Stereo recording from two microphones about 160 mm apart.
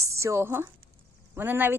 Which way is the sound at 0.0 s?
20° right (ahead or behind).